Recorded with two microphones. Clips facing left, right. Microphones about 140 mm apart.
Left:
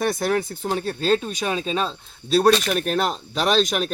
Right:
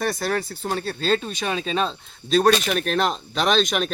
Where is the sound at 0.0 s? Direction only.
20° left (ahead or behind).